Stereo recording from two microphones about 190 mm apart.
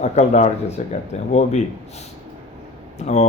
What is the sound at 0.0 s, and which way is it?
Speech, 35° left (ahead or behind).